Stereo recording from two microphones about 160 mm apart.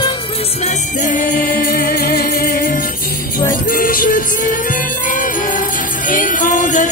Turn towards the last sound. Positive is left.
turn(degrees=55)  # may be behind; listen again after turning